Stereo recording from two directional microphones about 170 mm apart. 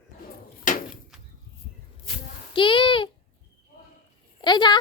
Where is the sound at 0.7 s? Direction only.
50° left (ahead or behind).